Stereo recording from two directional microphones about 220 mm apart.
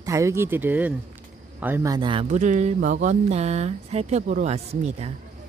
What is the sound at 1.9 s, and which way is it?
Speech, 25° right (ahead or behind).